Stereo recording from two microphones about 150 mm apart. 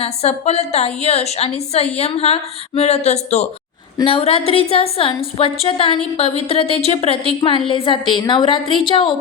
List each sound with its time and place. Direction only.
0.0 s a woman's voice: 45° left (ahead or behind)
3.9 s a woman's voice: 35° left (ahead or behind)